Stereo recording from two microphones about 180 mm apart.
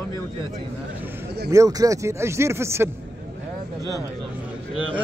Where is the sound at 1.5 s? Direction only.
20° right (ahead or behind).